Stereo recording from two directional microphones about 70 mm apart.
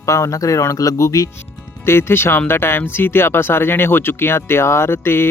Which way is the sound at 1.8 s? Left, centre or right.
Left.